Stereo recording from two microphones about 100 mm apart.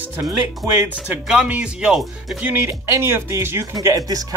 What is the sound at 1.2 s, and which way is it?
Speech, 5° right (ahead or behind).